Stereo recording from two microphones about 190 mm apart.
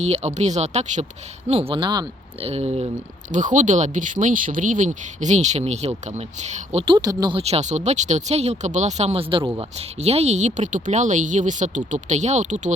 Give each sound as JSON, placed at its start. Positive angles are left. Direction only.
{"t": 0.0, "sound": "speech", "side_deg": -35}
{"t": 6.8, "sound": "speech", "side_deg": -20}
{"t": 9.4, "sound": "speech", "side_deg": -15}
{"t": 9.7, "sound": "speech", "side_deg": -35}